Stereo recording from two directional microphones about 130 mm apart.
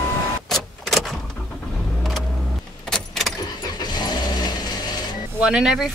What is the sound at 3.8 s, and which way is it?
Vehicle, 35° left (ahead or behind).